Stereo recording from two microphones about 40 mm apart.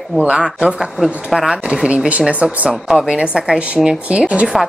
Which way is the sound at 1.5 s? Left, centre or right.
Right.